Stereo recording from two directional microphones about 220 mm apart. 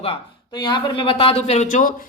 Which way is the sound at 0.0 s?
20° left (ahead or behind).